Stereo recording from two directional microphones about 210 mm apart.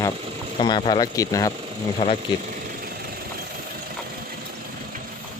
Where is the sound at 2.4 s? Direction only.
40° right (ahead or behind).